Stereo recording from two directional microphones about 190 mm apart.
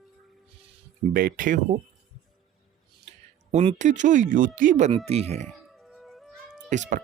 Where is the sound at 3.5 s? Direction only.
35° right (ahead or behind).